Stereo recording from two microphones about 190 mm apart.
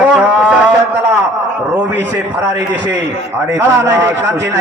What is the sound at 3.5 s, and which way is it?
A man's voice, 15° right (ahead or behind).